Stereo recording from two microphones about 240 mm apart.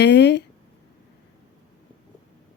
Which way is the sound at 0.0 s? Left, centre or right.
Left.